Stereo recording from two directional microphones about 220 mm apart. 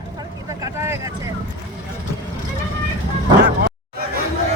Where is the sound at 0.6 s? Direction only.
10° right (ahead or behind).